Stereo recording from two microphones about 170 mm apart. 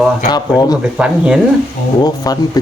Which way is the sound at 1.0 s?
5° right (ahead or behind).